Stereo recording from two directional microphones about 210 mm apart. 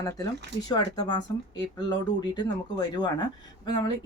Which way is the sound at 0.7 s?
20° left (ahead or behind).